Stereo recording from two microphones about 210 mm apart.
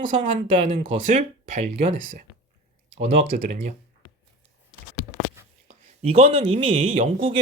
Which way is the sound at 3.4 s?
40° right (ahead or behind).